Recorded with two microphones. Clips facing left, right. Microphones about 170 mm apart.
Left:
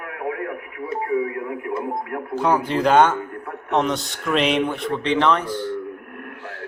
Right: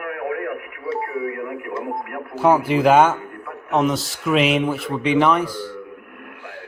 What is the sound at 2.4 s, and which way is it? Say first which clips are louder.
Speech: right 4 dB; 10° right (ahead or behind).